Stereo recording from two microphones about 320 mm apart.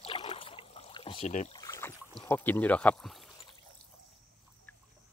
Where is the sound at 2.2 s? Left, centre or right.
Centre.